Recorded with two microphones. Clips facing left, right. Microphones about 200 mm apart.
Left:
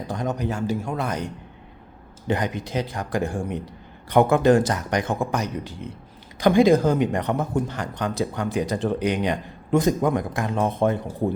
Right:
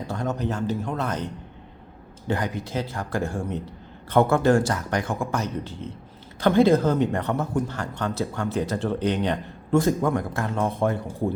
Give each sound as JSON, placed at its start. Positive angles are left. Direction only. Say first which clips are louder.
{"t": 0.1, "sound": "speech", "louder": "left 1 dB", "side_deg": 15}